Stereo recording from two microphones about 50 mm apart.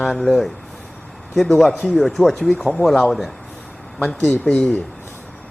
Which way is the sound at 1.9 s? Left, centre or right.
Centre.